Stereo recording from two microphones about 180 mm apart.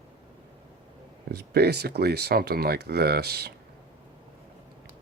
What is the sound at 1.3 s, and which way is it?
Speech, 65° right (ahead or behind).